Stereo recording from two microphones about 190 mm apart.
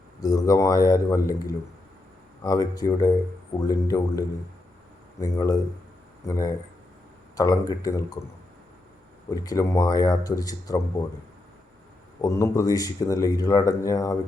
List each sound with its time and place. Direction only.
0.2 s a man's voice: 20° left (ahead or behind)
5.2 s a man's voice: 20° left (ahead or behind)
9.3 s speech: 20° left (ahead or behind)
12.2 s speech: 15° left (ahead or behind)